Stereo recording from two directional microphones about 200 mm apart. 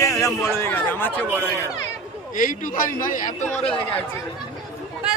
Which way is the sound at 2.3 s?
40° left (ahead or behind).